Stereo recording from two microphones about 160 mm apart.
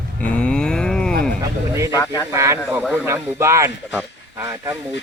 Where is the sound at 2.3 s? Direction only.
20° right (ahead or behind).